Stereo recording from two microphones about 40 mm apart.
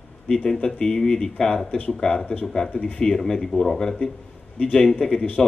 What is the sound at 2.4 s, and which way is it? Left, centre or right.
A man's voice, left.